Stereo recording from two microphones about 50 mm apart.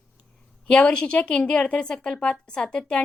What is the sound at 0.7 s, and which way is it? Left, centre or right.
A woman's voice, left.